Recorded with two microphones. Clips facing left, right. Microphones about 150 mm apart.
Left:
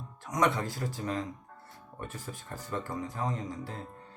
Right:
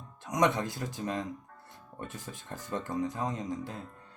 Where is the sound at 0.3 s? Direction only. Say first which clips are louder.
Right 1 dB; 20° right (ahead or behind).